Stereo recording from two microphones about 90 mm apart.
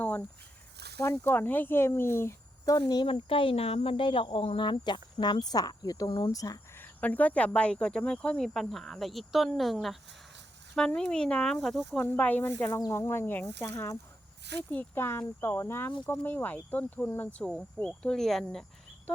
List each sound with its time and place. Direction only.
0.0 s a sound: 15° left (ahead or behind)
1.0 s speech: 25° left (ahead or behind)
2.7 s speech: 55° left (ahead or behind)
6.1 s speech: 65° left (ahead or behind)
6.3 s speech: 40° left (ahead or behind)
6.7 s speech: 20° left (ahead or behind); by 11.9 s centre (ahead or behind)
12.1 s speech: 20° left (ahead or behind); by 14.0 s 35° left (ahead or behind)
14.7 s speech: 25° left (ahead or behind)
17.8 s speech: 5° left (ahead or behind)